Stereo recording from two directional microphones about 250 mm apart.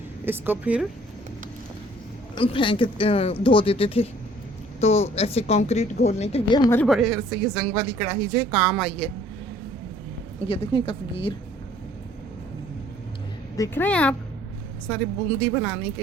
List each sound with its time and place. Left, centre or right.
0.3 s speech: centre
2.3 s speech: centre
6.7 s speech: centre
10.4 s speech: left
13.6 s speech: centre